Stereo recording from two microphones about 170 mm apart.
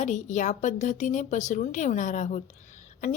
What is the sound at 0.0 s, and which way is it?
Speech, 45° left (ahead or behind).